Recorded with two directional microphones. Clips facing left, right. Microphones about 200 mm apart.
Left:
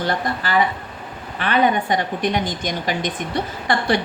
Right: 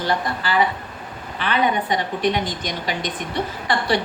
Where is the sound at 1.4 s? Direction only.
50° left (ahead or behind).